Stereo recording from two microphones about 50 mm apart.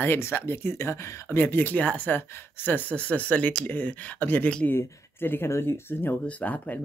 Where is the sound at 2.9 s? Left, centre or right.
Left.